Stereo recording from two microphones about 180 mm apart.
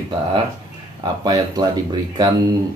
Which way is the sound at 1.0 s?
25° right (ahead or behind).